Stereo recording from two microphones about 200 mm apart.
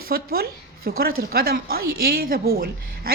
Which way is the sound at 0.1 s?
50° right (ahead or behind).